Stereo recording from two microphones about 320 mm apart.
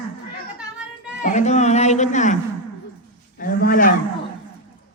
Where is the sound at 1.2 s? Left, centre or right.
Left.